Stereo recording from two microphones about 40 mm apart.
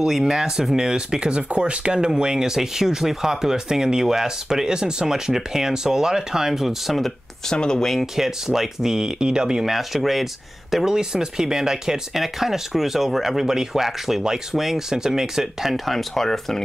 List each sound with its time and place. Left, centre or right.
0.0 s speech: centre
7.5 s speech: centre
8.2 s speech: centre
10.9 s speech: centre
12.1 s speech: centre